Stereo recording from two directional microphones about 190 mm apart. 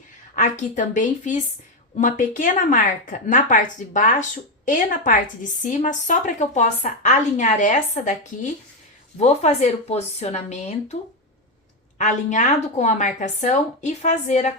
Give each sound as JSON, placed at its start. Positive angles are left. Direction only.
{"t": 0.3, "sound": "a woman's voice", "side_deg": 40}
{"t": 11.9, "sound": "a woman's voice", "side_deg": 40}